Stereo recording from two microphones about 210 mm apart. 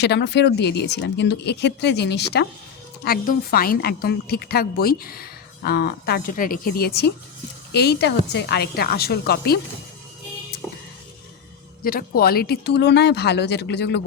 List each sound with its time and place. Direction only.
0.0 s a woman's voice: 55° left (ahead or behind)
11.8 s a woman's voice: 45° left (ahead or behind)